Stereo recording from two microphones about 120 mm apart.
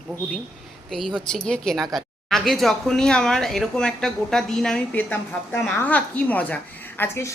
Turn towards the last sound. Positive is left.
turn(degrees=20)  # may be behind; listen again after turning